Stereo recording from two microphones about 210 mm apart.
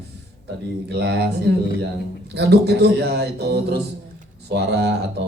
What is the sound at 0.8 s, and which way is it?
Speech, 50° right (ahead or behind).